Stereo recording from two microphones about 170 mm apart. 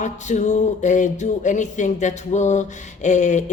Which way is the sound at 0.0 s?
45° left (ahead or behind).